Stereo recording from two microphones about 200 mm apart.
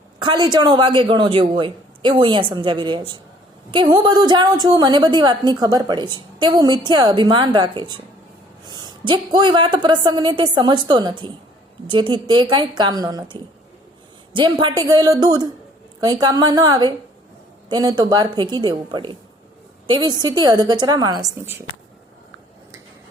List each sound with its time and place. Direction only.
0.2 s a woman's voice: 20° right (ahead or behind)